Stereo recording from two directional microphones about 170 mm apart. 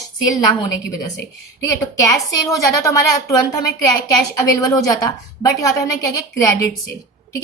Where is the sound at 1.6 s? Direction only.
20° left (ahead or behind).